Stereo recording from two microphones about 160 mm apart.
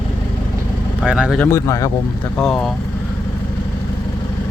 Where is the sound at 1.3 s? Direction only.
15° left (ahead or behind).